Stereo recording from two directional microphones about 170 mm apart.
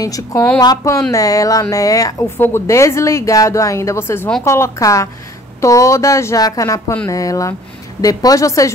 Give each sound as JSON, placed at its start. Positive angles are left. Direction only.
{"t": 0.0, "sound": "a woman's voice", "side_deg": 20}